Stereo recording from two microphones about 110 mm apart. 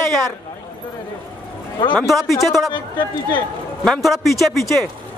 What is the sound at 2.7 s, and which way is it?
Speech, 45° left (ahead or behind).